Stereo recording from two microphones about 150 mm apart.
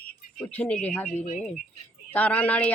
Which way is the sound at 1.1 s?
65° left (ahead or behind).